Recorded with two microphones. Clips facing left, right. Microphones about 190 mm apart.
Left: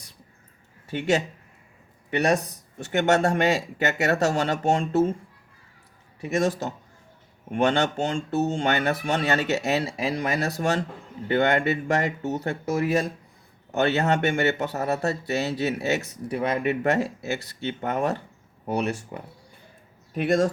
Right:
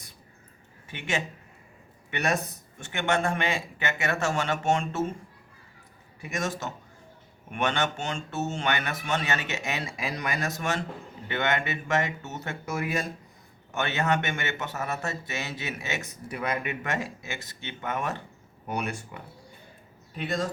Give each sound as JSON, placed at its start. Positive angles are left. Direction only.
{"t": 0.9, "sound": "speech", "side_deg": 40}
{"t": 6.2, "sound": "speech", "side_deg": 35}